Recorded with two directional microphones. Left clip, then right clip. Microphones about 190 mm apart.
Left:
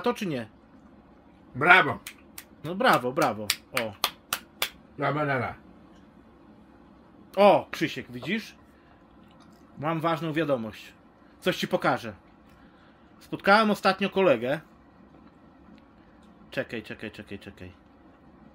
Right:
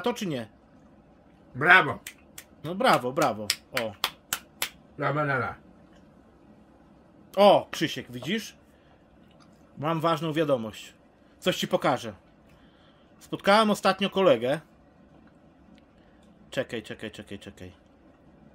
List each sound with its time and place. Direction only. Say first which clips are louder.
0.0 s speech: left 1 dB; 10° right (ahead or behind)
1.6 s speech: even; 5° right (ahead or behind)
7.3 s speech: right 1 dB; 15° right (ahead or behind)
7.8 s speech: even; 30° right (ahead or behind)
9.8 s a man's voice: right 1 dB; 25° right (ahead or behind)
13.3 s speech: even; 15° right (ahead or behind)
16.4 s speech: right 1 dB; 15° right (ahead or behind)